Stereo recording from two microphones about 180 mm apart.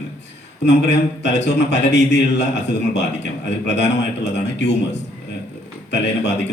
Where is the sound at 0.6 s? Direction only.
75° left (ahead or behind).